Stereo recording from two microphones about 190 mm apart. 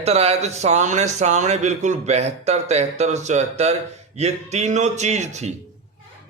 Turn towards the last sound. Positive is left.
turn(degrees=-35)  # may be behind; listen again after turning